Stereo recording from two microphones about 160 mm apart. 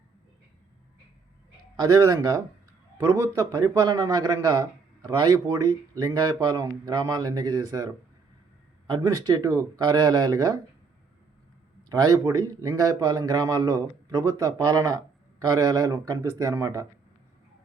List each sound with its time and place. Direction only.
1.7 s speech: 20° right (ahead or behind)
8.9 s speech: 25° right (ahead or behind)
11.9 s speech: 25° right (ahead or behind)